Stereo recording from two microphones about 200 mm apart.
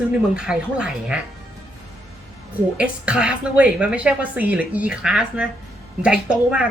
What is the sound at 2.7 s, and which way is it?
A woman's voice, 5° right (ahead or behind).